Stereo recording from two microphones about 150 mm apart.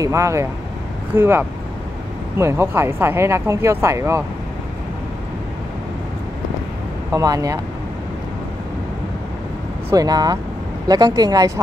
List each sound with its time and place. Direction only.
0.0 s speech: 20° right (ahead or behind)
7.1 s speech: 20° right (ahead or behind)
9.8 s speech: 25° right (ahead or behind)